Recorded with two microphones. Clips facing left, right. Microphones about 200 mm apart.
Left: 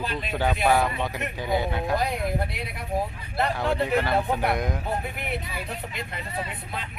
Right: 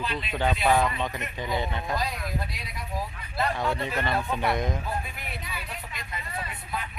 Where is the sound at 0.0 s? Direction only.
45° left (ahead or behind).